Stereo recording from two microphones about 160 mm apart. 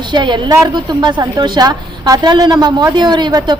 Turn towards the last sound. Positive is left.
turn(degrees=-25)  # may be behind; listen again after turning